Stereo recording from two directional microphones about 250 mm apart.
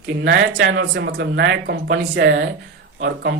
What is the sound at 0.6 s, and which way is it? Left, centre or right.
Speech, right.